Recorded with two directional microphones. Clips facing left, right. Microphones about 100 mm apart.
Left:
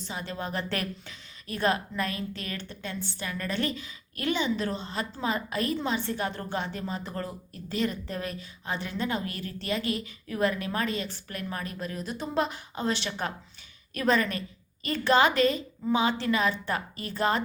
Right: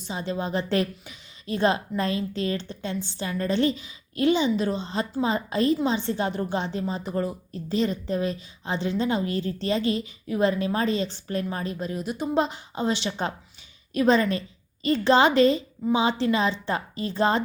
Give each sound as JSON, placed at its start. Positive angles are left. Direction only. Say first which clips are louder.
{"t": 0.0, "sound": "a woman's voice", "louder": "right 5 dB", "side_deg": -20}